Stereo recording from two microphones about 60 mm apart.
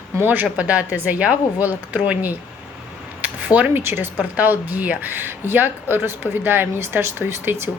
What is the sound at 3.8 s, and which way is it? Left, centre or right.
Speech, right.